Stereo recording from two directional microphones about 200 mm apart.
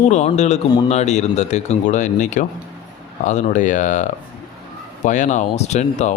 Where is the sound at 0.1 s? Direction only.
35° left (ahead or behind).